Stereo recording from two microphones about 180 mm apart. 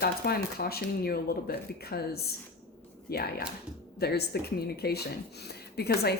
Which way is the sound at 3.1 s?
60° left (ahead or behind).